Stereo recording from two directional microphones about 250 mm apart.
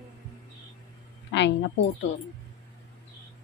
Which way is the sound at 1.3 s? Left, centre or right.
Left.